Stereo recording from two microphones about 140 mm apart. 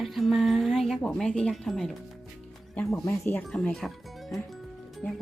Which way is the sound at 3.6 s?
Centre (ahead or behind).